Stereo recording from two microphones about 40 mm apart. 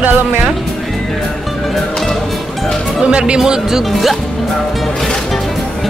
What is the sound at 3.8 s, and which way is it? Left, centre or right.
Speech, centre.